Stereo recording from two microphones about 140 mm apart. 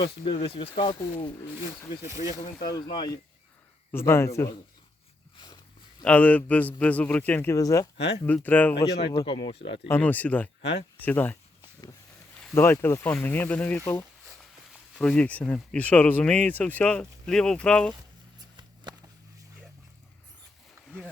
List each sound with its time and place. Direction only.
0.3 s speech: 45° left (ahead or behind)
1.4 s speech: 25° left (ahead or behind)
2.0 s speech: 20° right (ahead or behind)
2.6 s speech: 30° left (ahead or behind)
3.9 s speech: 20° left (ahead or behind)
6.1 s speech: 10° left (ahead or behind)
7.5 s speech: 25° left (ahead or behind)
8.3 s speech: 10° left (ahead or behind)
9.0 s speech: 45° left (ahead or behind)
9.9 s speech: 10° left (ahead or behind)
12.5 s speech: 15° left (ahead or behind)
18.3 s a sound: 30° right (ahead or behind)